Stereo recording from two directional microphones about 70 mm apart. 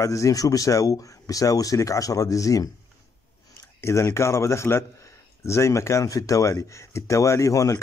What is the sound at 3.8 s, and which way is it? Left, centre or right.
Speech, left.